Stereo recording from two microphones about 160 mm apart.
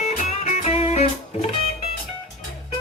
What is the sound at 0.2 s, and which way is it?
Music, 45° left (ahead or behind).